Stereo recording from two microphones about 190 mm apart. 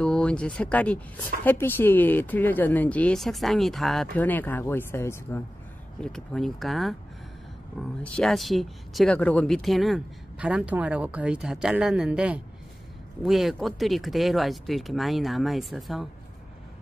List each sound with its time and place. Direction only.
0.0 s speech: 5° left (ahead or behind)
5.9 s speech: centre (ahead or behind)
8.0 s speech: centre (ahead or behind)